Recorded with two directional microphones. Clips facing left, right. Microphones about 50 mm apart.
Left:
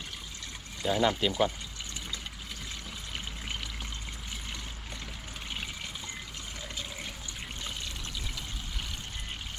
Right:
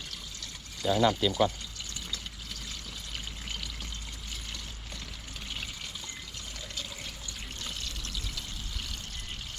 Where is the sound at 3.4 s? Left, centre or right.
Centre.